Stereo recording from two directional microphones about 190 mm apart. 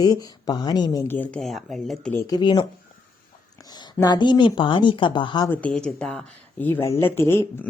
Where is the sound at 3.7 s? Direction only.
20° left (ahead or behind).